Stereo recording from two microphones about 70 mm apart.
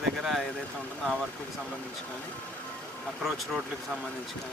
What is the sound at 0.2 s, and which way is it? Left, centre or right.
Vehicle, centre.